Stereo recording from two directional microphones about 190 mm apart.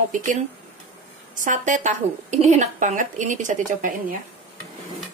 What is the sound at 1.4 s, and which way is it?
Speech, 40° right (ahead or behind).